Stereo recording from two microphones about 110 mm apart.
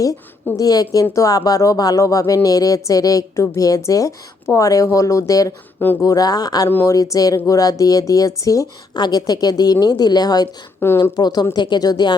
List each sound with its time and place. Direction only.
0.5 s speech: 35° left (ahead or behind)
6.7 s speech: 20° left (ahead or behind)
6.9 s speech: 30° left (ahead or behind)
10.8 s speech: 20° left (ahead or behind)
11.2 s speech: 35° left (ahead or behind)